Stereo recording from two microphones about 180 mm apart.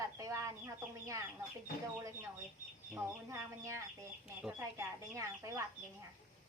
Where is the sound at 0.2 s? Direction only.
15° right (ahead or behind).